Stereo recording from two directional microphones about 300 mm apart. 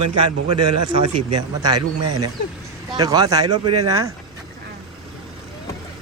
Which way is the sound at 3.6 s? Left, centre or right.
Right.